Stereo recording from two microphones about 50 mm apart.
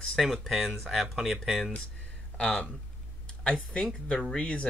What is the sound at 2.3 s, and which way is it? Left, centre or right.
Speech, left.